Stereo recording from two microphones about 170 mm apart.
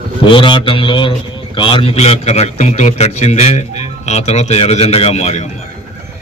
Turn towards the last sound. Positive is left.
turn(degrees=40)  # may be behind; listen again after turning